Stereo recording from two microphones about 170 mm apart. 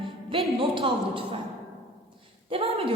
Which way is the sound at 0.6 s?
30° right (ahead or behind).